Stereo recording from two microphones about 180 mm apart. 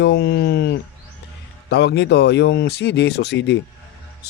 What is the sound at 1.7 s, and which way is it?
Speech, 70° left (ahead or behind).